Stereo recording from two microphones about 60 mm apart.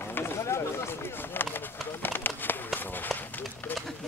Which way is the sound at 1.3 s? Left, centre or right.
Left.